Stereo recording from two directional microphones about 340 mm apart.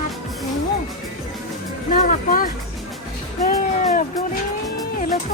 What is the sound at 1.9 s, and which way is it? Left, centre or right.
Speech, left.